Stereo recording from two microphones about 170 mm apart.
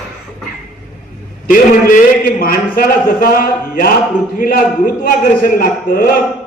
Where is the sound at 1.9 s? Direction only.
55° left (ahead or behind).